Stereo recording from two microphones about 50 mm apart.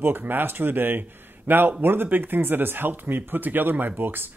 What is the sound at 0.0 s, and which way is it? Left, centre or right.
Speech, right.